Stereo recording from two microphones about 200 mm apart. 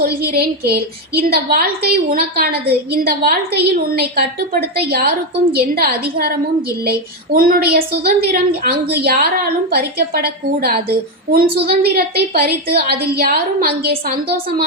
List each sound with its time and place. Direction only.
0.0 s a woman's voice: 50° right (ahead or behind)